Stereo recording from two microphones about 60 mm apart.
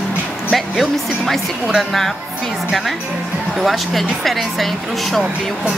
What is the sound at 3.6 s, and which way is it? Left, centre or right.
Speech, centre.